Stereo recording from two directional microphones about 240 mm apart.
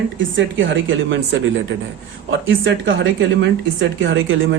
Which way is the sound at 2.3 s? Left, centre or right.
Right.